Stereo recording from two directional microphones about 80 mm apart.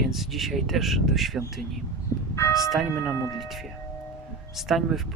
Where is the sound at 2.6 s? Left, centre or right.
Centre.